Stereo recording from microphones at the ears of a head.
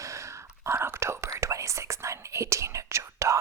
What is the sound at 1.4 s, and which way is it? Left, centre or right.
Whispering, right.